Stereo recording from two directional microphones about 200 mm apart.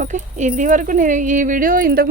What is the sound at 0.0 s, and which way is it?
Speech, 40° right (ahead or behind).